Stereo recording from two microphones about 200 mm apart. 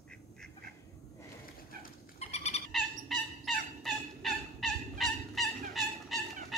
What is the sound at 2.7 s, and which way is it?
Fowl, centre (ahead or behind).